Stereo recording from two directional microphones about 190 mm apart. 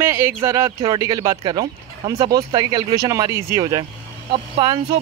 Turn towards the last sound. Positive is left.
turn(degrees=-25)  # may be behind; listen again after turning